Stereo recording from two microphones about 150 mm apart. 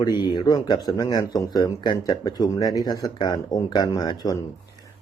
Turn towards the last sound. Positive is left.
turn(degrees=25)  # may be behind; listen again after turning